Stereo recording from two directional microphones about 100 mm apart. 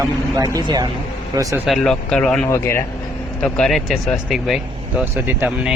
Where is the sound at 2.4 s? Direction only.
25° left (ahead or behind).